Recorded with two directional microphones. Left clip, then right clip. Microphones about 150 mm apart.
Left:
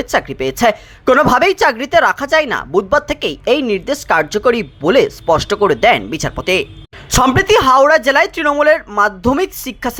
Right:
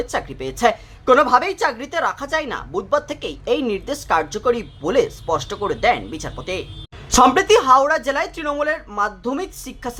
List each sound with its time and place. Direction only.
0.0 s a woman's voice: 30° left (ahead or behind)